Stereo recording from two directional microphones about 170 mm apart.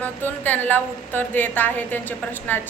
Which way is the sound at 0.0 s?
10° left (ahead or behind).